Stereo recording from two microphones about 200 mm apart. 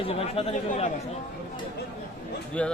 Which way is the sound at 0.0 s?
30° left (ahead or behind).